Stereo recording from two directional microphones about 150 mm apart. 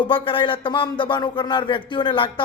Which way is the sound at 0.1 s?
35° left (ahead or behind).